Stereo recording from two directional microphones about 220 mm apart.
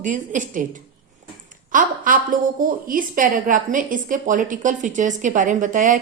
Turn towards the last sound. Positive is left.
turn(degrees=-35)  # may be behind; listen again after turning